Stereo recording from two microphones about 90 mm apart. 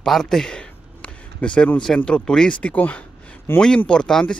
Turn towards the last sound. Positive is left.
turn(degrees=10)  # may be behind; listen again after turning